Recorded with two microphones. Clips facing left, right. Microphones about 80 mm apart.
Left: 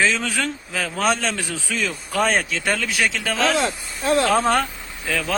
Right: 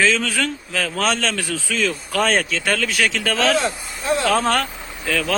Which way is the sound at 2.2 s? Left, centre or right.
Centre.